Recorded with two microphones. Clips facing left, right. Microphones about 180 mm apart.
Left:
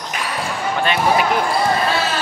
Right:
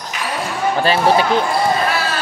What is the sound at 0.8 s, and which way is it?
Speech, 30° right (ahead or behind).